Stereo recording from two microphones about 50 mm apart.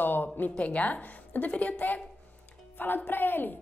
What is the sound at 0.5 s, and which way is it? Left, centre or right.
A woman's voice, left.